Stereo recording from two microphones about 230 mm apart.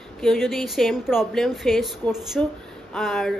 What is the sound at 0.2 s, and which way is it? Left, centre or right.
A woman's voice, centre.